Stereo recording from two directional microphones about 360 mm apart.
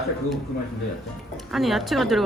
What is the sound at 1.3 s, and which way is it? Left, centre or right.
Speech, centre.